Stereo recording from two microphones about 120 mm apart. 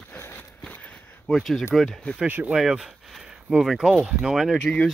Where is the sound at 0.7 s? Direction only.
5° left (ahead or behind).